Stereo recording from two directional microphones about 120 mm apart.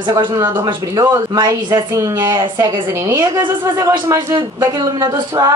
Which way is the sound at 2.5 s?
40° right (ahead or behind).